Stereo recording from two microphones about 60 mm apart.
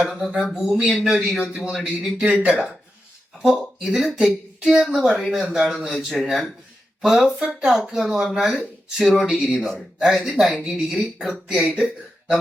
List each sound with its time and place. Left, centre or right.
0.0 s speech: centre
1.7 s speech: centre
2.1 s speech: centre
3.4 s speech: centre
4.3 s a sound: centre
4.9 s speech: centre